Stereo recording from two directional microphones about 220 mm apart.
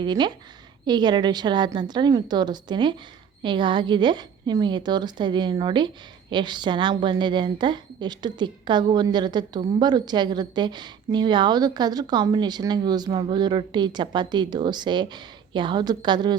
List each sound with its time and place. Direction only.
0.0 s a woman's voice: 20° right (ahead or behind)